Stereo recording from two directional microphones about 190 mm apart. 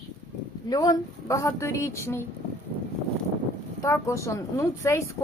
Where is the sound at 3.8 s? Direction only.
15° left (ahead or behind).